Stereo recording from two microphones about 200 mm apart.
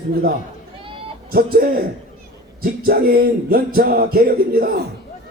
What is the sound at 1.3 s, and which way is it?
A man's voice, 50° right (ahead or behind).